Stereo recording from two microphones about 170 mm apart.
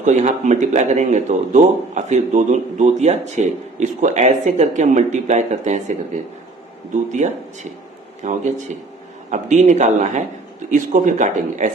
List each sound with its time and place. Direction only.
0.0 s speech: 45° right (ahead or behind)
6.9 s speech: 45° right (ahead or behind)